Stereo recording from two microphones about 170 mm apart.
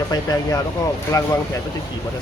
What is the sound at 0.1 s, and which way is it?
Speech, 20° left (ahead or behind).